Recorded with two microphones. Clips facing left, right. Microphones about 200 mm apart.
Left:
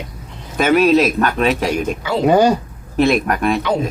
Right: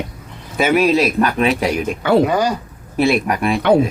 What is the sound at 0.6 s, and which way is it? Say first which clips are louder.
Speech: left 2 dB; 10° right (ahead or behind).